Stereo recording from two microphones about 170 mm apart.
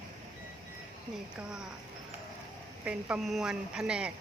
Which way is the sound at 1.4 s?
5° right (ahead or behind).